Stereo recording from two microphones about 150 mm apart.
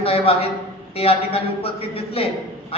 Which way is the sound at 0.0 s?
40° left (ahead or behind).